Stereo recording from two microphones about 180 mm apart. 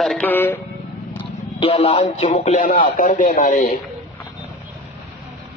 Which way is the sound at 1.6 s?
35° left (ahead or behind).